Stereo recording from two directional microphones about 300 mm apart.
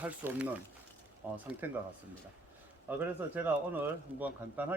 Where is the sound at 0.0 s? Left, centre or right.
Centre.